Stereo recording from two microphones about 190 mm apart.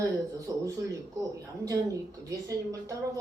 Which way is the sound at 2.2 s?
20° right (ahead or behind).